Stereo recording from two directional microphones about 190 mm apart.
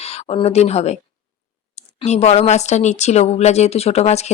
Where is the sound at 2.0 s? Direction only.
35° left (ahead or behind).